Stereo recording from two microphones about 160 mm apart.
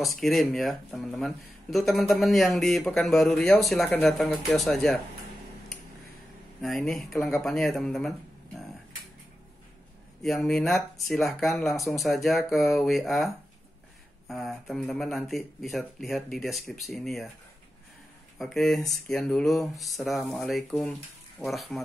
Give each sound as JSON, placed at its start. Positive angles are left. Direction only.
{"t": 0.0, "sound": "speech", "side_deg": 0}
{"t": 6.6, "sound": "speech", "side_deg": 5}
{"t": 10.2, "sound": "speech", "side_deg": 5}
{"t": 18.4, "sound": "speech", "side_deg": 0}